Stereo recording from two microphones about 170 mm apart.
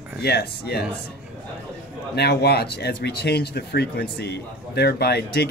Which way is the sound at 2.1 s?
70° left (ahead or behind).